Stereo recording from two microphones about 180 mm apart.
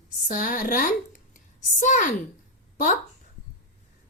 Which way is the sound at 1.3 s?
45° left (ahead or behind).